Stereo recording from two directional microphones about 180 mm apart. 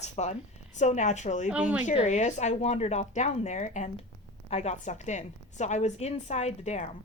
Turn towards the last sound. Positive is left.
turn(degrees=40)  # may be behind; listen again after turning